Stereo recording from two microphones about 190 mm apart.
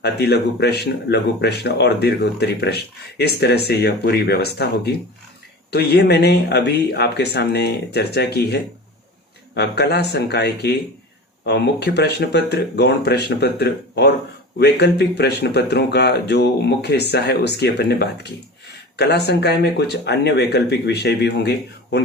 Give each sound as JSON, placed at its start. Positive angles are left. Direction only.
{"t": 0.0, "sound": "speech", "side_deg": 60}
{"t": 5.7, "sound": "speech", "side_deg": 60}